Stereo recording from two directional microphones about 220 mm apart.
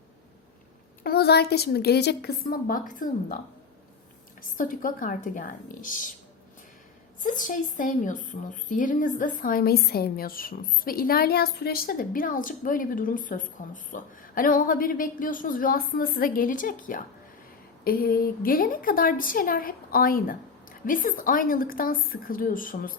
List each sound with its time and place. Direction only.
1.0 s a woman's voice: 45° left (ahead or behind)
7.2 s a woman's voice: 35° left (ahead or behind)